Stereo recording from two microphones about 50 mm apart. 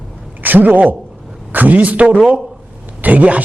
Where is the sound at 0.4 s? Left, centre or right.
Right.